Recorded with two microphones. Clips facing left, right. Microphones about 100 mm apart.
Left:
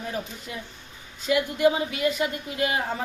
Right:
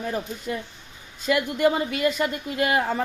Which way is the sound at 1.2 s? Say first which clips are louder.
Even; 55° right (ahead or behind).